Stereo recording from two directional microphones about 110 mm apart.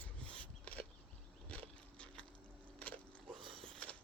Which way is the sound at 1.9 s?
10° left (ahead or behind).